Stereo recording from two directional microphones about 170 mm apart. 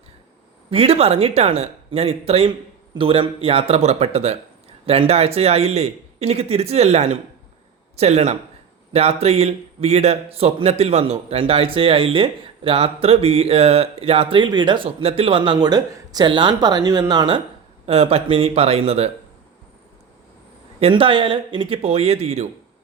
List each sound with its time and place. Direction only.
0.7 s a man's voice: 35° right (ahead or behind)
20.7 s a man's voice: 35° right (ahead or behind)